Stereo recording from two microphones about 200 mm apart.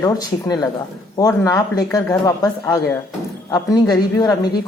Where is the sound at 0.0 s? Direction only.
20° left (ahead or behind).